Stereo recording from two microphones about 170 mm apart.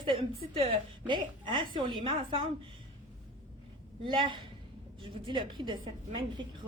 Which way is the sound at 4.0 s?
30° right (ahead or behind).